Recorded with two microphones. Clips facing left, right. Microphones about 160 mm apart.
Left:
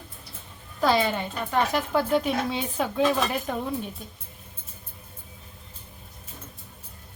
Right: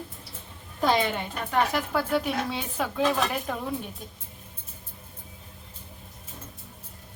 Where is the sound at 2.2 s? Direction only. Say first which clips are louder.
Left 3 dB; 5° right (ahead or behind).